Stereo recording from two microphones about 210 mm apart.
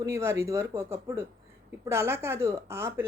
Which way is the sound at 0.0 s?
15° right (ahead or behind).